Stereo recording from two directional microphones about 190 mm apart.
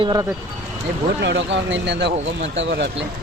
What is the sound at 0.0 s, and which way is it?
Speech, 20° right (ahead or behind).